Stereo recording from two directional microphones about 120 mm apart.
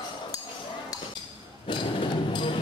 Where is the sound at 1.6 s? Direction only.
45° left (ahead or behind).